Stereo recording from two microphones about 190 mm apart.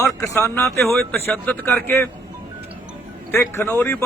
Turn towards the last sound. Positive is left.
turn(degrees=10)  # may be behind; listen again after turning